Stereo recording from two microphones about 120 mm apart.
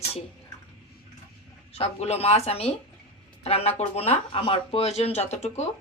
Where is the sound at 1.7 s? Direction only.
60° left (ahead or behind).